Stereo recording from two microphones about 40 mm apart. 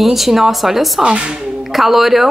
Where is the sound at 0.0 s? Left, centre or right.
Centre.